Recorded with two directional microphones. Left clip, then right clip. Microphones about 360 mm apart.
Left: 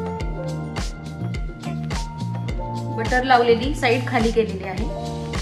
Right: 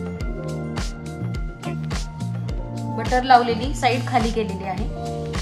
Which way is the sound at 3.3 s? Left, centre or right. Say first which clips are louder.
Even; right.